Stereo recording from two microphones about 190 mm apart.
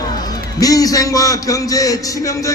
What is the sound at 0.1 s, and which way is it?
A man's voice, 20° left (ahead or behind).